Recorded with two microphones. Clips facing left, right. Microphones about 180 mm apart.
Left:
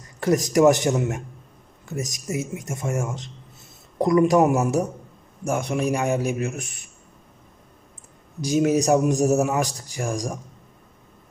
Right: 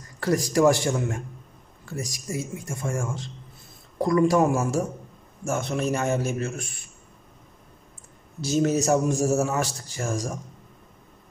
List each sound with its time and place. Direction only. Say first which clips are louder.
0.2 s speech: left 3 dB; 20° left (ahead or behind)
8.4 s speech: left 3 dB; 10° left (ahead or behind)